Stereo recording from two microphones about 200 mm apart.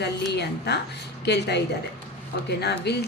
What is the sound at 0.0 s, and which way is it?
A woman's voice, 55° left (ahead or behind).